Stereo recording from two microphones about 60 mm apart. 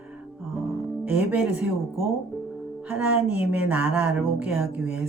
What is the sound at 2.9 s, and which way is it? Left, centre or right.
Speech, right.